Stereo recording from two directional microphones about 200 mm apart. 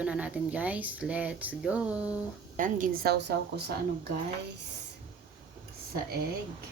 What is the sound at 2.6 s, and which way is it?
A woman's voice, 40° right (ahead or behind).